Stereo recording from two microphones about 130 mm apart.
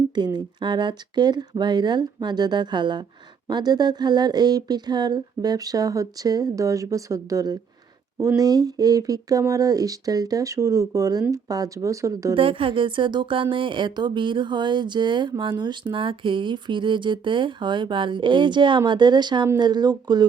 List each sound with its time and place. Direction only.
0.1 s speech: 35° right (ahead or behind)
12.3 s speech: 45° right (ahead or behind)